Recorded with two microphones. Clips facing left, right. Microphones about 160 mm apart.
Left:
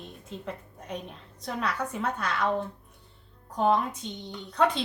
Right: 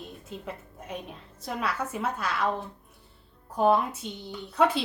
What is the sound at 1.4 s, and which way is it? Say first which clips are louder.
A woman's voice: even; 5° right (ahead or behind).